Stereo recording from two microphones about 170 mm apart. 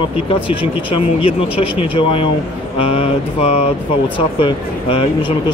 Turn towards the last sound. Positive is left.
turn(degrees=30)  # may be behind; listen again after turning